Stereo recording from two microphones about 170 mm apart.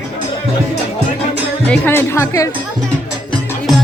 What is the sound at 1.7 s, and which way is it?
Speech, 10° left (ahead or behind).